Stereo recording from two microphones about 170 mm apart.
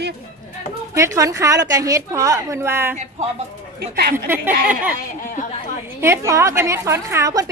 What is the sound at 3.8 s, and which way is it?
Speech, 70° right (ahead or behind).